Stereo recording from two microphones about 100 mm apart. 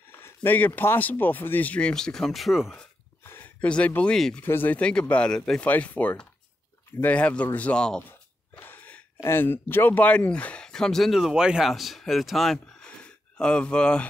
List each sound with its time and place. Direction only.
0.2 s speech: 20° left (ahead or behind); by 2.8 s centre (ahead or behind)
3.3 s a sound: 20° left (ahead or behind)
3.6 s speech: 10° left (ahead or behind)
4.5 s speech: 20° left (ahead or behind)
8.1 s a sound: 20° left (ahead or behind)
9.2 s speech: 25° left (ahead or behind)